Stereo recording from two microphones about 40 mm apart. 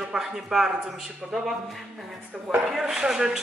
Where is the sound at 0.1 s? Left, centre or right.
Centre.